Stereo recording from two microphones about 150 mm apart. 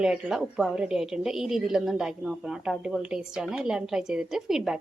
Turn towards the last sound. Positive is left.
turn(degrees=-5)  # may be behind; listen again after turning